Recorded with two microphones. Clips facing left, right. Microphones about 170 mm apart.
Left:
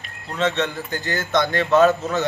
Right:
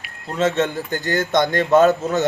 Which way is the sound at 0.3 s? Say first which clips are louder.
Right 3 dB; 45° right (ahead or behind).